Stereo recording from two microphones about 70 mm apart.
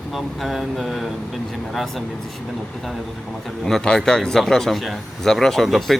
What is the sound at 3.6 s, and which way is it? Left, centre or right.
Speech, centre.